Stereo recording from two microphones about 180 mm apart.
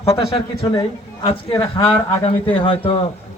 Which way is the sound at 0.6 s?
25° left (ahead or behind).